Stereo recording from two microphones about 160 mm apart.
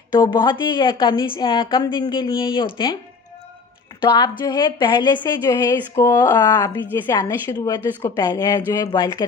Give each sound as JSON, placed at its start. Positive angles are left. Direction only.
{"t": 0.1, "sound": "a woman's voice", "side_deg": 25}
{"t": 4.0, "sound": "a woman's voice", "side_deg": 30}